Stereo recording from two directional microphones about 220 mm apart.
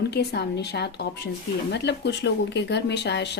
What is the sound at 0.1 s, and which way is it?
Speech, 50° left (ahead or behind).